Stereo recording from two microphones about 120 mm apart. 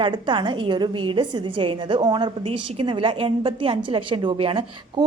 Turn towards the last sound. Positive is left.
turn(degrees=-45)  # may be behind; listen again after turning